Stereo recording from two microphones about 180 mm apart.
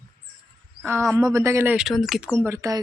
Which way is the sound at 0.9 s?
15° right (ahead or behind).